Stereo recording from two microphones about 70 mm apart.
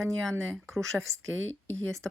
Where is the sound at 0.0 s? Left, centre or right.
Centre.